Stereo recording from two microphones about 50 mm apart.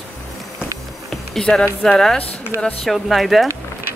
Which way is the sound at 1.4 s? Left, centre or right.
Centre.